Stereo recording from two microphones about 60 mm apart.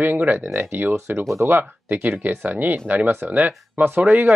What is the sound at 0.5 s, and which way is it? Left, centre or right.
Speech, right.